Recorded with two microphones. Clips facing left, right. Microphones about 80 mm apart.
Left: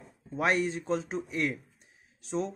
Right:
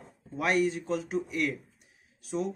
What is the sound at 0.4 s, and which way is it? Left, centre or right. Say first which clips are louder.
Speech: right 1 dB; left.